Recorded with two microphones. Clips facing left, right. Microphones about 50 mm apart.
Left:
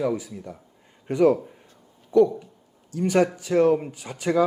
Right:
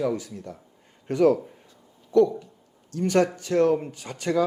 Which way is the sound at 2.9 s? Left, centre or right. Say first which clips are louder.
Left 1 dB; centre.